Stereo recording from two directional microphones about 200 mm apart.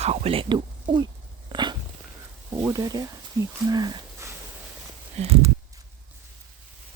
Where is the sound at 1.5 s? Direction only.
20° right (ahead or behind).